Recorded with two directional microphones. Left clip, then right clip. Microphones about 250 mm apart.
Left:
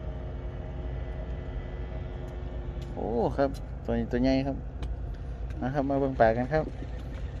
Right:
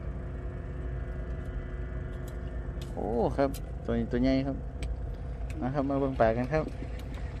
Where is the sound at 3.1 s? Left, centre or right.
Centre.